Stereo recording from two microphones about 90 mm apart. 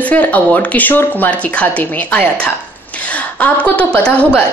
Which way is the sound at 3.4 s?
15° left (ahead or behind).